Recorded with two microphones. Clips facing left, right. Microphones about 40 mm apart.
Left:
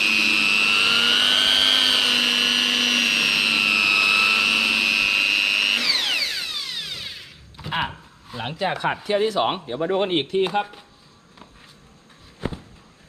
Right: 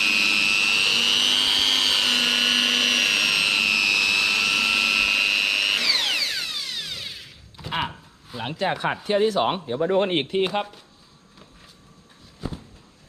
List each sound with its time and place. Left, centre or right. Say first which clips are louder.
0.0 s vehicle: left 1 dB; centre
9.0 s speech: right 1 dB; left
9.7 s speech: right 2 dB; left
10.3 s speech: left 2 dB; centre
12.4 s a sound: left 4 dB; left